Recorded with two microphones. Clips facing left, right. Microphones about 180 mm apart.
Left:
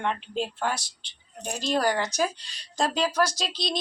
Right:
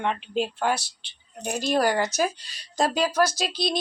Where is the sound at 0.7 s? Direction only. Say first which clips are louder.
Right 5 dB; 65° right (ahead or behind).